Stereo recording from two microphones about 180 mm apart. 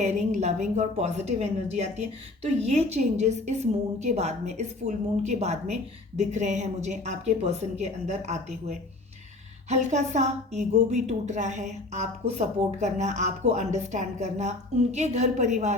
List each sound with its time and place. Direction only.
0.0 s speech: 40° right (ahead or behind)